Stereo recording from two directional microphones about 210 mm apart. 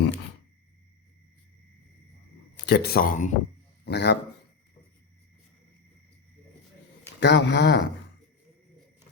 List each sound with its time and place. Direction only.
2.6 s speech: 50° left (ahead or behind)
3.8 s speech: 55° left (ahead or behind)
7.2 s speech: 55° left (ahead or behind)